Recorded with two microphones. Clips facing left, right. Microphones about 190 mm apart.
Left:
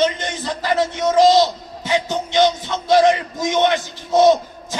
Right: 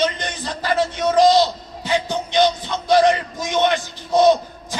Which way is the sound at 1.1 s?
20° left (ahead or behind).